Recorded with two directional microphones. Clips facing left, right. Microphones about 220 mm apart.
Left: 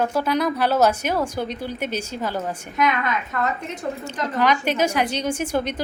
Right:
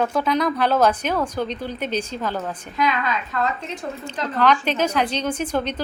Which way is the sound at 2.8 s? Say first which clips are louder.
Left 1 dB; 20° left (ahead or behind).